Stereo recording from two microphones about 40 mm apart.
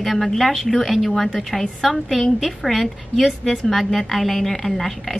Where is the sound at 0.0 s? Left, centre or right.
Centre.